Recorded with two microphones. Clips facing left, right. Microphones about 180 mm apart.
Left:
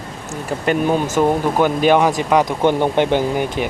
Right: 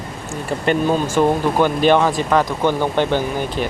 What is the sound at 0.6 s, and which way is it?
Speech, 10° left (ahead or behind).